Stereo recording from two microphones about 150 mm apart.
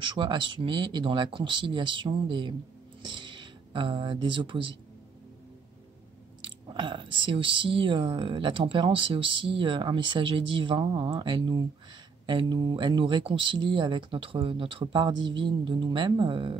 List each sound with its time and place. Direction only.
0.0 s speech: 35° right (ahead or behind)
6.4 s speech: 35° right (ahead or behind)